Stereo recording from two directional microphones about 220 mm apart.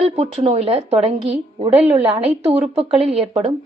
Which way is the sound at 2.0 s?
25° right (ahead or behind).